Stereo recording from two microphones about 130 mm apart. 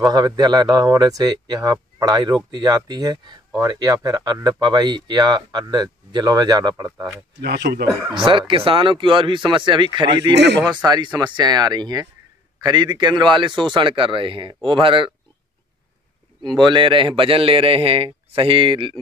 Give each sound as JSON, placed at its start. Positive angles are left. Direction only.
{"t": 0.0, "sound": "speech", "side_deg": -30}
{"t": 7.7, "sound": "speech", "side_deg": -90}
{"t": 8.3, "sound": "speech", "side_deg": -40}
{"t": 16.4, "sound": "a man's voice", "side_deg": -35}